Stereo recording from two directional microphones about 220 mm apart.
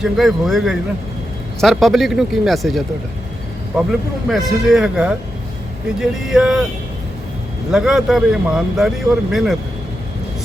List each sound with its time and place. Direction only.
0.0 s speech: centre (ahead or behind)
4.3 s speech: centre (ahead or behind)
7.7 s speech: centre (ahead or behind)